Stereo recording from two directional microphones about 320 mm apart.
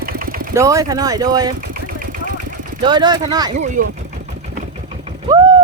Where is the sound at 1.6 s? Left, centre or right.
Right.